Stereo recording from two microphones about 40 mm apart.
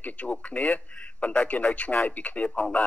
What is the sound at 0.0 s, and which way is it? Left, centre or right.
Speech, left.